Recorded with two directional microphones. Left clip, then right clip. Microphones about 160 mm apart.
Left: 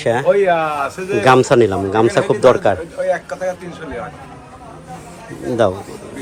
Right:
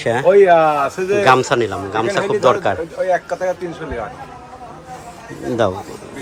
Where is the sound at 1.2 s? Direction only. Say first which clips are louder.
Left 3 dB; 5° right (ahead or behind).